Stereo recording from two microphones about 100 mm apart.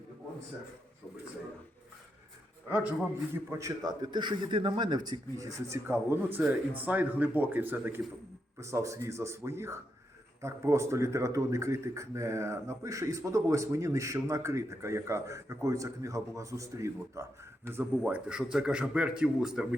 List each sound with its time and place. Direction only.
2.6 s speech: 15° right (ahead or behind)
3.8 s speech: 45° right (ahead or behind)
5.5 s speech: 30° right (ahead or behind)
8.5 s speech: 30° right (ahead or behind)
17.9 s speech: 10° right (ahead or behind)